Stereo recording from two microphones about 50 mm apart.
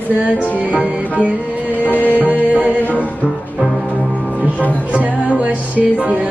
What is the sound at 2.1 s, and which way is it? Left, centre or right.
Music, right.